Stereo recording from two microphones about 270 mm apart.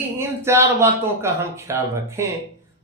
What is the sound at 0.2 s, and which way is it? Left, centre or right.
Speech, centre.